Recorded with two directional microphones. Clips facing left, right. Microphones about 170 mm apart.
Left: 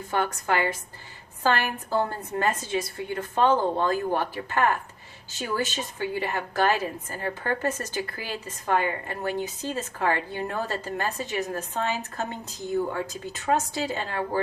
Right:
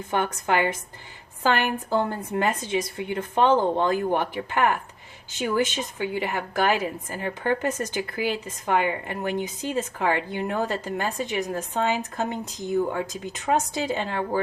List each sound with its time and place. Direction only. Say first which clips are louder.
0.1 s a woman's voice: right 2 dB; 20° right (ahead or behind)